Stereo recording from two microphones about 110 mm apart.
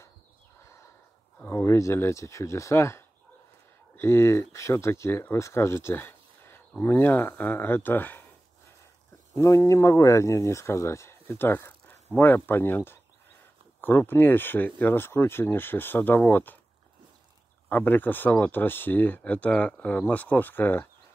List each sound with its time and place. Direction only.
0.6 s a sound: 25° left (ahead or behind)
1.4 s speech: 20° left (ahead or behind)
9.3 s speech: 25° left (ahead or behind)
17.6 s speech: 15° left (ahead or behind)